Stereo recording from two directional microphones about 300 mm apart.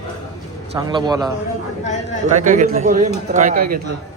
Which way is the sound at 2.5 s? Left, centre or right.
Right.